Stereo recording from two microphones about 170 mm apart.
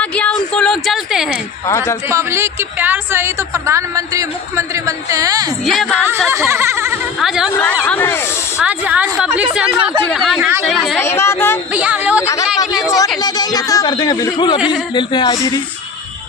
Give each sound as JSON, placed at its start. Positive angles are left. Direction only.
{"t": 0.0, "sound": "a sound", "side_deg": 5}
{"t": 1.7, "sound": "speech", "side_deg": 15}
{"t": 2.0, "sound": "a woman's voice", "side_deg": -15}
{"t": 5.7, "sound": "speech", "side_deg": 5}
{"t": 6.0, "sound": "speech", "side_deg": -15}
{"t": 7.2, "sound": "speech", "side_deg": -5}
{"t": 7.8, "sound": "speech", "side_deg": 10}
{"t": 8.5, "sound": "a woman's voice", "side_deg": -10}
{"t": 11.0, "sound": "speech", "side_deg": 15}
{"t": 11.7, "sound": "speech", "side_deg": -5}
{"t": 12.4, "sound": "a sound", "side_deg": 0}
{"t": 13.2, "sound": "speech", "side_deg": 25}